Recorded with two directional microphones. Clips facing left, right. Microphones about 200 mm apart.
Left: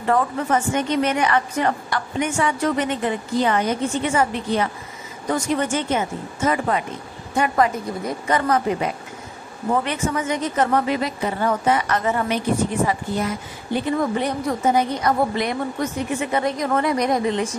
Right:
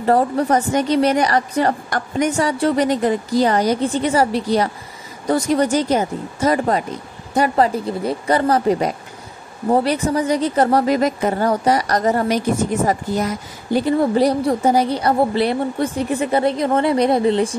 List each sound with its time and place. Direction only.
0.0 s a woman's voice: 35° right (ahead or behind)